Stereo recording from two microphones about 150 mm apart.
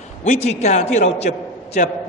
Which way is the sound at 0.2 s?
50° left (ahead or behind).